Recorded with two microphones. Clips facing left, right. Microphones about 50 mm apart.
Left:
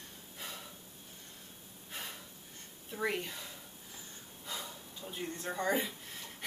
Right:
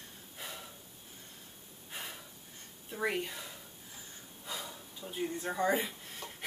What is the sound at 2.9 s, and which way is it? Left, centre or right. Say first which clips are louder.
Speech: right 1 dB; centre.